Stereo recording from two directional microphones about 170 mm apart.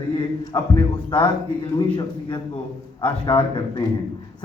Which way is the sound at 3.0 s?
30° left (ahead or behind).